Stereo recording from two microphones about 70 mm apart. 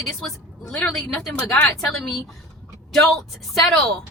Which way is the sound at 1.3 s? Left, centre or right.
Left.